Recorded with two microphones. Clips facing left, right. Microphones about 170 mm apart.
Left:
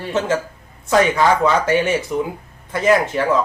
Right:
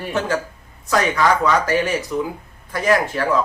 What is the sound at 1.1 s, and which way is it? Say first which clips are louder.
Speech: left 2 dB; 25° left (ahead or behind).